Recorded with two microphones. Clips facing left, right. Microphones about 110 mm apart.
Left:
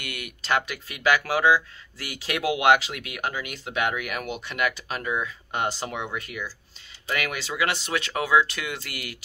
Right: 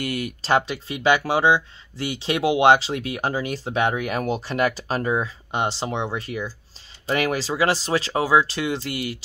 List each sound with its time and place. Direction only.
0.0 s speech: 35° right (ahead or behind)
5.5 s speech: 25° right (ahead or behind)